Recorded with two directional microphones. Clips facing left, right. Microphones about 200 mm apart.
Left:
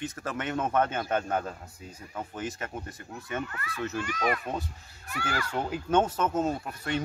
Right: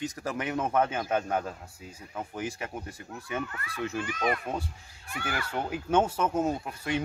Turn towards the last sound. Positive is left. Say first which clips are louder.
# right 1 dB
turn(degrees=-10)  # may be behind; listen again after turning